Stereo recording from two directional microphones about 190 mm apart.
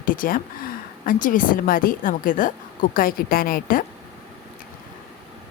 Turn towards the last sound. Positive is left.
turn(degrees=50)  # may be behind; listen again after turning